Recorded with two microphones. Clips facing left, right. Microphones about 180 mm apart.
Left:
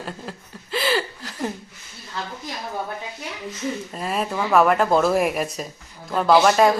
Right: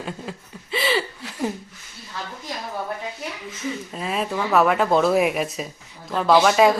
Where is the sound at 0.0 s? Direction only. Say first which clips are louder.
Right 1 dB; centre (ahead or behind).